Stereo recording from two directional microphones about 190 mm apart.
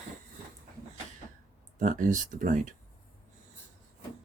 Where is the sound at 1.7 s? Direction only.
40° right (ahead or behind).